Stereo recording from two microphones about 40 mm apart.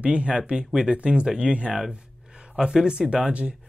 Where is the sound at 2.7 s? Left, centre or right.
Centre.